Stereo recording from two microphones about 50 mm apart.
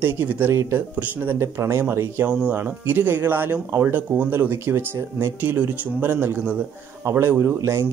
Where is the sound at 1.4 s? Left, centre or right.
Right.